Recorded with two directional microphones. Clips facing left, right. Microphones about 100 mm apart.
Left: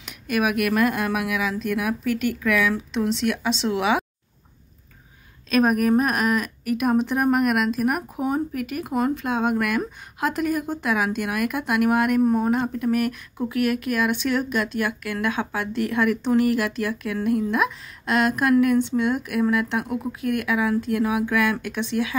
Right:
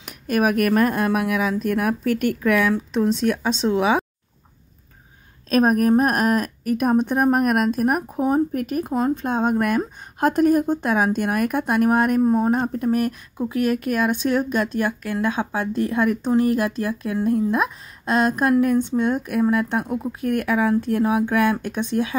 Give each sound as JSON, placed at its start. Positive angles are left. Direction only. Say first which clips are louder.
{"t": 0.0, "sound": "a woman's voice", "louder": "right 3 dB", "side_deg": -40}
{"t": 5.5, "sound": "a woman's voice", "louder": "right 2 dB", "side_deg": -40}
{"t": 12.4, "sound": "a woman's voice", "louder": "right 2 dB", "side_deg": -40}
{"t": 14.8, "sound": "a woman's voice", "louder": "right 3 dB", "side_deg": -25}
{"t": 20.2, "sound": "a woman's voice", "louder": "right 3 dB", "side_deg": -40}